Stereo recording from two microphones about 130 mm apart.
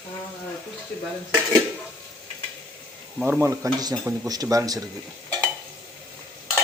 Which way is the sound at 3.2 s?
15° right (ahead or behind).